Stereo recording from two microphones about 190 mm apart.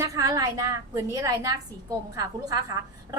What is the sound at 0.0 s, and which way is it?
A woman's voice, 15° right (ahead or behind).